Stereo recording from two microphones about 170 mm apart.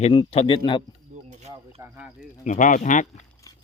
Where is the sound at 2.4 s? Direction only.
50° left (ahead or behind).